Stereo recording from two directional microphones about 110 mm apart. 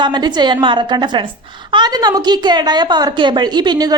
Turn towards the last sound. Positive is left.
turn(degrees=-40)  # may be behind; listen again after turning